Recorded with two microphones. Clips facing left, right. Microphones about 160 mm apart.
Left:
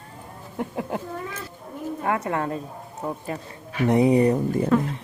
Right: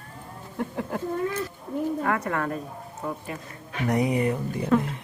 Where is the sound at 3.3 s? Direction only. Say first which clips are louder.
Left 4 dB; 40° left (ahead or behind).